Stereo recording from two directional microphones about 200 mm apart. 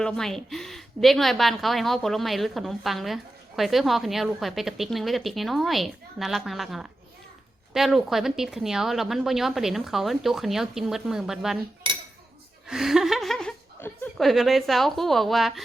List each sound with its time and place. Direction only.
0.0 s a woman's voice: centre (ahead or behind)
12.6 s a woman's voice: centre (ahead or behind)